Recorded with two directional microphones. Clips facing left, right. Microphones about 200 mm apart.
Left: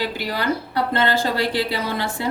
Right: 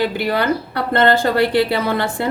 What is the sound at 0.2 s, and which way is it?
A woman's voice, 60° right (ahead or behind).